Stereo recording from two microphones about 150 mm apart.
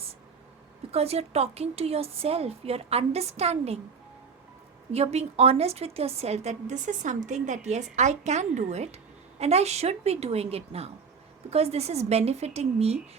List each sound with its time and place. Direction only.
0.9 s a woman's voice: 45° right (ahead or behind)
4.9 s a woman's voice: 45° right (ahead or behind)